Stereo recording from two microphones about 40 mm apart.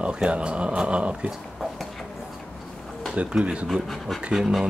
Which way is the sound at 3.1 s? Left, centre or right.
Right.